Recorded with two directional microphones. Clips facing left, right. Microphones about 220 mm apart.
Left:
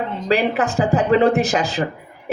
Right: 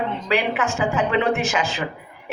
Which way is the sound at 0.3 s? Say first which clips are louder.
Left 5 dB; 35° left (ahead or behind).